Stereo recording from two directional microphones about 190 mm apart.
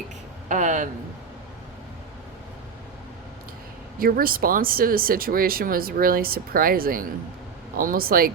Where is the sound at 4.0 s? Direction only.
50° right (ahead or behind).